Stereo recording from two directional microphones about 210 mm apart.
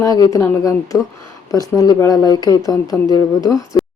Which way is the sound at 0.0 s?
15° left (ahead or behind).